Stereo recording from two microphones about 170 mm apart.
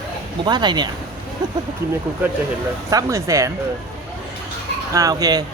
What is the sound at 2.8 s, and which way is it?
Speech, 20° right (ahead or behind).